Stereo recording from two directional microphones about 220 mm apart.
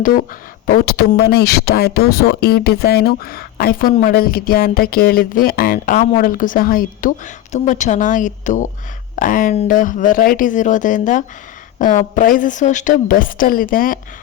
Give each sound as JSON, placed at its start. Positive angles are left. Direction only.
{"t": 0.0, "sound": "a woman's voice", "side_deg": 40}